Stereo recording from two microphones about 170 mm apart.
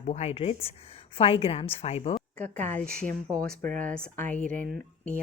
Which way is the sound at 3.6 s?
50° right (ahead or behind).